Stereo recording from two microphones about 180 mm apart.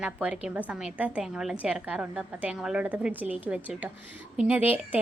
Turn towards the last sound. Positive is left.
turn(degrees=-10)  # may be behind; listen again after turning